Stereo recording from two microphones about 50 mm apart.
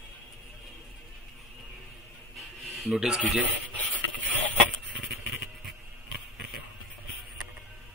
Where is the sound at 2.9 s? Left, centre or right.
Centre.